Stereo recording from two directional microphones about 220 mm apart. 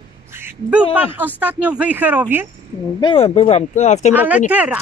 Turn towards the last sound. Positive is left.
turn(degrees=-5)  # may be behind; listen again after turning